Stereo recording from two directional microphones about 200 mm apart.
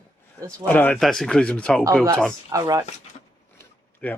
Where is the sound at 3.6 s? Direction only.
10° left (ahead or behind).